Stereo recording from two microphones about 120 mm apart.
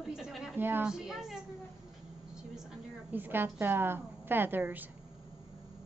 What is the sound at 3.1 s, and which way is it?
A woman's voice, 15° right (ahead or behind).